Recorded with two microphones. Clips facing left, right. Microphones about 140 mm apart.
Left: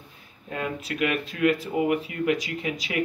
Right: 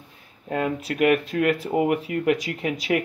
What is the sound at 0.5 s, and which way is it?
Speech, 50° right (ahead or behind).